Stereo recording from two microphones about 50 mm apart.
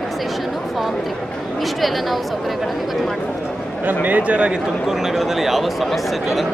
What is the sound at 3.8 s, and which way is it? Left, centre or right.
Speech, right.